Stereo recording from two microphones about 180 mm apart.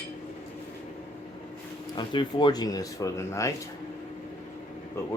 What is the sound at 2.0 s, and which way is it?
Speech, 25° left (ahead or behind).